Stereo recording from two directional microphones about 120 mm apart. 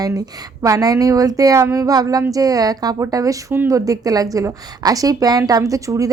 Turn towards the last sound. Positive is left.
turn(degrees=-25)  # may be behind; listen again after turning